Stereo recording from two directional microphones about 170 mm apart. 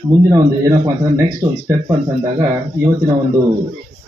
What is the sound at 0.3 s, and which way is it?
Speech, 20° right (ahead or behind).